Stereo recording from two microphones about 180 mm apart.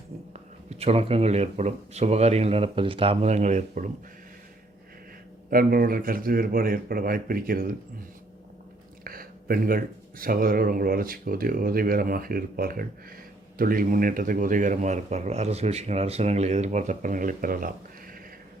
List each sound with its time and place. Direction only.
0.7 s speech: 35° right (ahead or behind)
5.5 s speech: 55° right (ahead or behind)
9.0 s speech: 55° right (ahead or behind)